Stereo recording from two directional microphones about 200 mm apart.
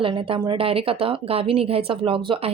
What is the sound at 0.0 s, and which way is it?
A woman's voice, 25° right (ahead or behind).